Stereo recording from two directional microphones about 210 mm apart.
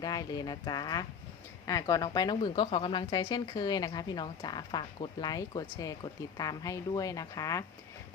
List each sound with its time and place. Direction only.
0.0 s a woman's voice: 20° left (ahead or behind)